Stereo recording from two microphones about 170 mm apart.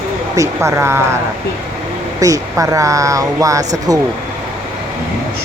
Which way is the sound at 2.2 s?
20° right (ahead or behind).